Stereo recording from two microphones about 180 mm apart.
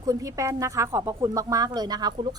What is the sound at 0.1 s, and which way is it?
A woman's voice, 20° right (ahead or behind).